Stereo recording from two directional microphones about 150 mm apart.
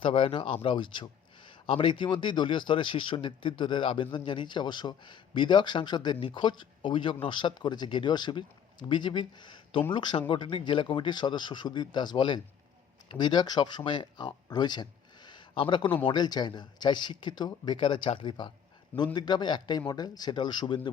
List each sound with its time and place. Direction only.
0.0 s speech: 35° left (ahead or behind)